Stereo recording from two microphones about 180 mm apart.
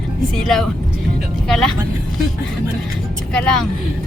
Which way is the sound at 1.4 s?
Centre (ahead or behind).